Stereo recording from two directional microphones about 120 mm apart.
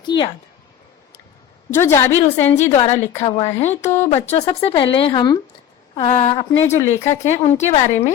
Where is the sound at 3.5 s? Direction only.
70° left (ahead or behind).